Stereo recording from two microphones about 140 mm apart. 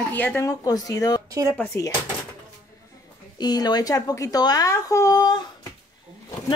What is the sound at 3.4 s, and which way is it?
Speech, 30° left (ahead or behind).